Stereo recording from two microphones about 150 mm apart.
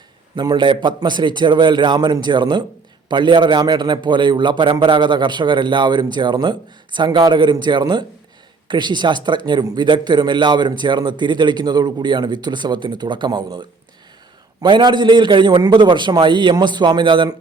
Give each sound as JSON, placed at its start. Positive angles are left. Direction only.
{"t": 0.3, "sound": "a man's voice", "side_deg": -30}